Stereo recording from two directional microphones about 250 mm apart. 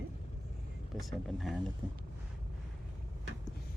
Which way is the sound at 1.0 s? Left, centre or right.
Centre.